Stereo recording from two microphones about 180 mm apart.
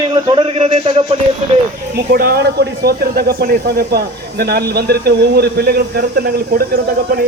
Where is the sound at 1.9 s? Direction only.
55° right (ahead or behind).